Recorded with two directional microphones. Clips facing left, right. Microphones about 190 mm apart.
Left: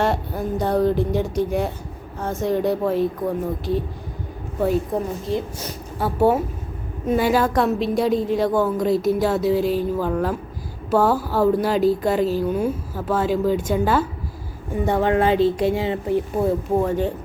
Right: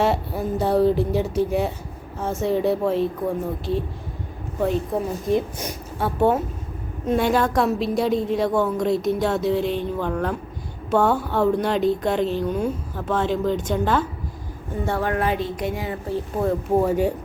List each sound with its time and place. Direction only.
0.0 s a woman's voice: 5° right (ahead or behind)
5.3 s speech: 15° right (ahead or behind)
6.0 s a woman's voice: 5° left (ahead or behind)
14.8 s speech: 20° left (ahead or behind)
16.7 s speech: 10° right (ahead or behind)